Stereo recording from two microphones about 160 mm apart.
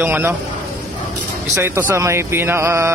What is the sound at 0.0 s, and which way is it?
Speech, 10° right (ahead or behind).